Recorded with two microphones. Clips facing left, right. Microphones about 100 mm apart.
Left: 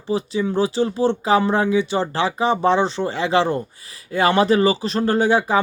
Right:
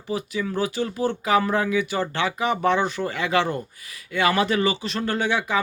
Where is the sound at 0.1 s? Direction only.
30° left (ahead or behind).